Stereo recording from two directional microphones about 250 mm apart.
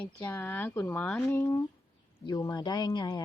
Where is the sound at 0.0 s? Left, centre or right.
Centre.